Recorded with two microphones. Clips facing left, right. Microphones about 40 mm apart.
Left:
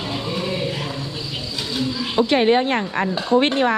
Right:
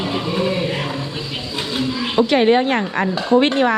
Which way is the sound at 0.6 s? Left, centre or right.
Right.